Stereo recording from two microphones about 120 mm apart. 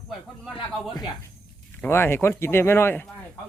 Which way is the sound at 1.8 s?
20° left (ahead or behind).